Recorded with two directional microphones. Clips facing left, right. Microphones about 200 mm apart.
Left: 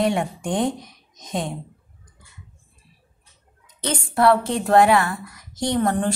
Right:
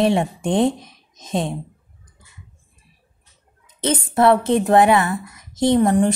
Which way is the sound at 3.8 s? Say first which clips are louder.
Right 3 dB; 20° right (ahead or behind).